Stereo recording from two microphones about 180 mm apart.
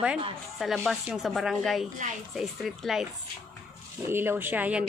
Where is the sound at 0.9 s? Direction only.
Centre (ahead or behind).